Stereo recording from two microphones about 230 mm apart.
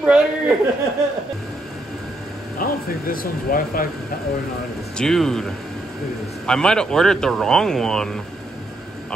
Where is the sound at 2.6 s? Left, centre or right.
Left.